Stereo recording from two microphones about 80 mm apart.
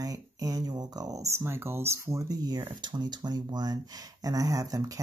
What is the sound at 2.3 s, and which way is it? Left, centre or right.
Speech, right.